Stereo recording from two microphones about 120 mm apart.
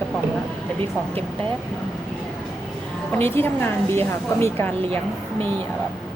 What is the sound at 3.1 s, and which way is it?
A woman's voice, 20° left (ahead or behind).